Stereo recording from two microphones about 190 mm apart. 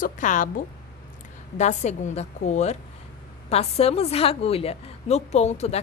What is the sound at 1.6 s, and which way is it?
A woman's voice, 40° left (ahead or behind).